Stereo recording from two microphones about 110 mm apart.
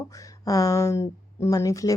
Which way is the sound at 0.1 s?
30° left (ahead or behind).